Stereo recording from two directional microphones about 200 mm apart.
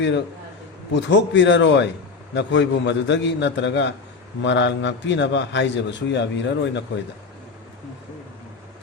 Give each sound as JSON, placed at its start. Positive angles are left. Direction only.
{"t": 0.9, "sound": "a man's voice", "side_deg": 65}